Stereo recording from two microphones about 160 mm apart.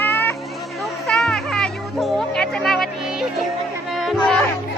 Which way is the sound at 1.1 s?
Centre (ahead or behind).